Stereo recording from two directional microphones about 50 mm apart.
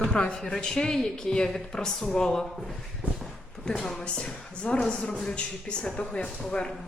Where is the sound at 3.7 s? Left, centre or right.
Centre.